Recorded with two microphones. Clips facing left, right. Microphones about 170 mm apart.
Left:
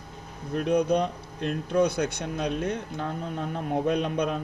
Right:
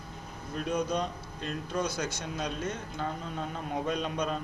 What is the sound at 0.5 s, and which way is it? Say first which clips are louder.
Speech: left 7 dB; 60° left (ahead or behind).